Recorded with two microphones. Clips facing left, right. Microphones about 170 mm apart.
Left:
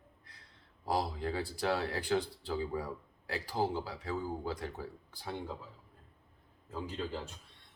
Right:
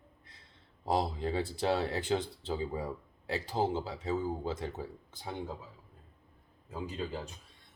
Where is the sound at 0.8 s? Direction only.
25° right (ahead or behind).